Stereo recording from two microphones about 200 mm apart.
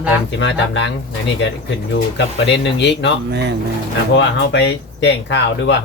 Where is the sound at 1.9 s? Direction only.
60° left (ahead or behind).